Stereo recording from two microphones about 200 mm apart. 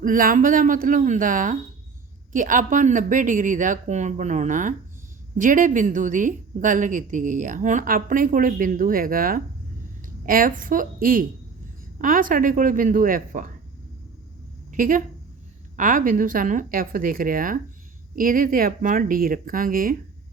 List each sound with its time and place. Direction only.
0.0 s a woman's voice: 45° right (ahead or behind)
14.7 s a woman's voice: 40° right (ahead or behind)